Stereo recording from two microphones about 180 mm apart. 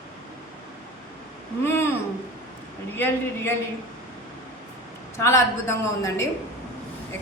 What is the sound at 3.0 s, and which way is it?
Speech, 10° left (ahead or behind).